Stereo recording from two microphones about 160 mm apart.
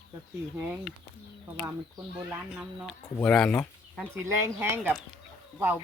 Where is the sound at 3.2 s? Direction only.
5° left (ahead or behind).